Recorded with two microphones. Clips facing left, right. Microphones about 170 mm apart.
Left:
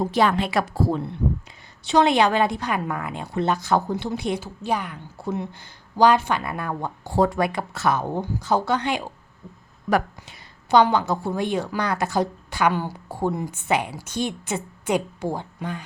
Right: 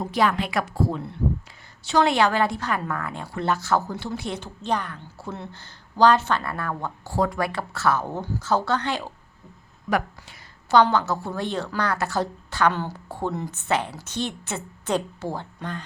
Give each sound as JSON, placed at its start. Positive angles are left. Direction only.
{"t": 0.0, "sound": "speech", "side_deg": 30}
{"t": 1.8, "sound": "a woman's voice", "side_deg": 20}
{"t": 10.2, "sound": "a woman's voice", "side_deg": 15}